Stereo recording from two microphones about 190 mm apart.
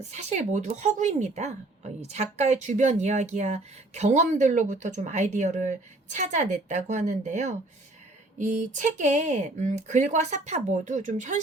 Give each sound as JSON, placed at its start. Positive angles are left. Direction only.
{"t": 0.0, "sound": "speech", "side_deg": -35}